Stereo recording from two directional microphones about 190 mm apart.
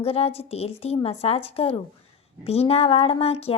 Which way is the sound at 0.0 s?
30° left (ahead or behind).